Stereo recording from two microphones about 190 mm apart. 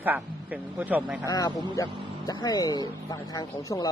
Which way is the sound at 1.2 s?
20° left (ahead or behind).